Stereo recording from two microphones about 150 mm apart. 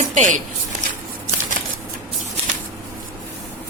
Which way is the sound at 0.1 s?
60° right (ahead or behind).